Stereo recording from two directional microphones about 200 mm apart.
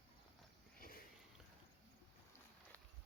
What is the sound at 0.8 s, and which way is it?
Sniff, 45° left (ahead or behind).